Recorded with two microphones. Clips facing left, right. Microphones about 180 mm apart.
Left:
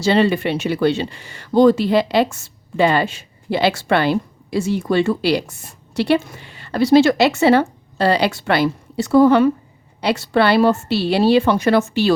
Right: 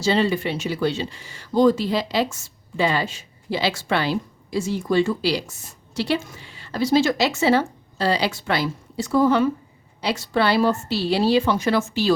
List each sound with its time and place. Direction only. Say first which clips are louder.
0.0 s speech: left 5 dB; 65° left (ahead or behind)